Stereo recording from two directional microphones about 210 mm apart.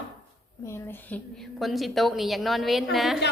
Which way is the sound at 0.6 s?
10° left (ahead or behind).